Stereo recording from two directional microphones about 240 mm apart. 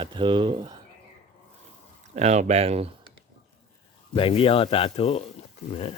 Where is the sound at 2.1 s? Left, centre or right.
Right.